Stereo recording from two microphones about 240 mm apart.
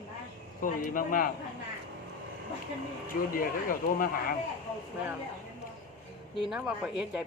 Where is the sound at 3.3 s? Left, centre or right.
Left.